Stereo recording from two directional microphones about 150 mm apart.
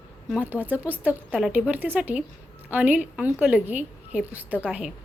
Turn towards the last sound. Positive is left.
turn(degrees=-10)  # may be behind; listen again after turning